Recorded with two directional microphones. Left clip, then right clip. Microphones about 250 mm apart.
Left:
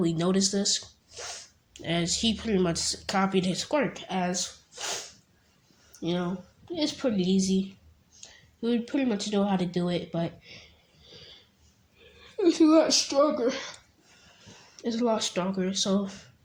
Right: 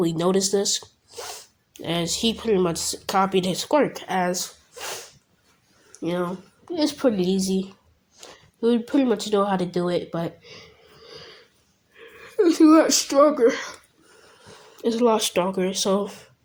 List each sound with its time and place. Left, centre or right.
0.0 s speech: right
6.0 s speech: right
14.8 s speech: right